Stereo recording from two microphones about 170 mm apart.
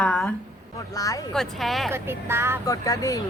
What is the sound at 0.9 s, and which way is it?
Speech, 20° left (ahead or behind).